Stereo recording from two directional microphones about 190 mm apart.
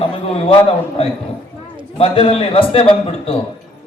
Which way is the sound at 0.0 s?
30° left (ahead or behind).